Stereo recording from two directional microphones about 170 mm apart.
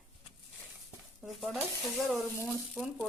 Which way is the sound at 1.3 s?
Centre (ahead or behind).